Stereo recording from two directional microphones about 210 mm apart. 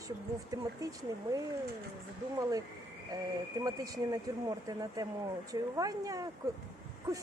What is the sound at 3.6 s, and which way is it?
Speech, 15° right (ahead or behind).